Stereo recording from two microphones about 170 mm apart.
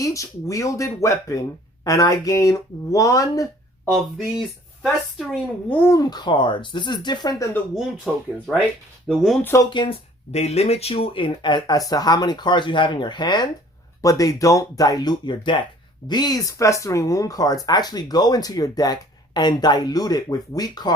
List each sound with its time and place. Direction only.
0.0 s speech: 20° left (ahead or behind)
5.3 s speech: 10° left (ahead or behind)
7.8 s speech: centre (ahead or behind)
9.4 s speech: 15° left (ahead or behind)
9.6 s speech: 30° left (ahead or behind)